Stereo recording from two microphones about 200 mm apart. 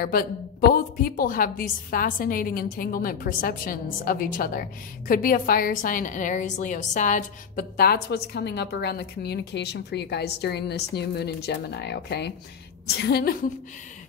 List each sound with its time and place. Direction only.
0.0 s a woman's voice: 50° left (ahead or behind)